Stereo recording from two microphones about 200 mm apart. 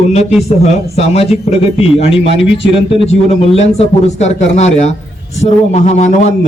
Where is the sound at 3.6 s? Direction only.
35° left (ahead or behind).